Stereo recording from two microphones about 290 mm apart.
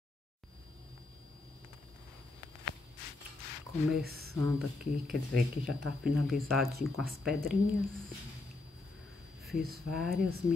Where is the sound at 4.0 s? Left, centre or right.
Right.